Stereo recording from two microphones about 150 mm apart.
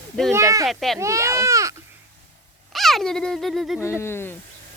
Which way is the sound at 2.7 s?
Centre (ahead or behind).